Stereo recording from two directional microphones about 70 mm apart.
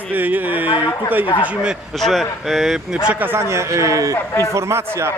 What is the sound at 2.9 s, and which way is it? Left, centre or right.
Speech, centre.